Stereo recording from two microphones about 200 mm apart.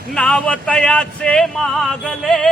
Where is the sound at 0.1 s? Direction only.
5° left (ahead or behind).